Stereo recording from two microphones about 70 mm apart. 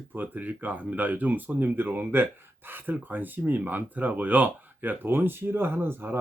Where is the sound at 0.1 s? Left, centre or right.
Right.